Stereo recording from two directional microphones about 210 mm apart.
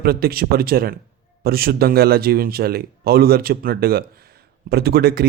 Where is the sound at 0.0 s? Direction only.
45° right (ahead or behind).